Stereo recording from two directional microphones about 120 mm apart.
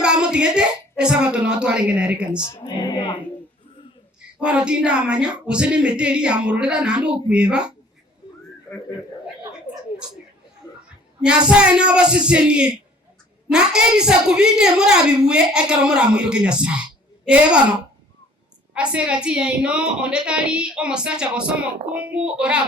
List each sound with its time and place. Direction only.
0.0 s speech: 5° right (ahead or behind)
2.6 s music: 40° left (ahead or behind)
4.4 s a woman's voice: 10° right (ahead or behind)
9.7 s a sound: 15° left (ahead or behind)
11.2 s a woman's voice: 5° right (ahead or behind)